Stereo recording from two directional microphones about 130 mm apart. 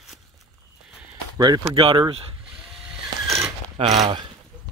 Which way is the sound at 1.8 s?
40° right (ahead or behind).